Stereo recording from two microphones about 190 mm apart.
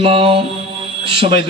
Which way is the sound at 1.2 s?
30° right (ahead or behind).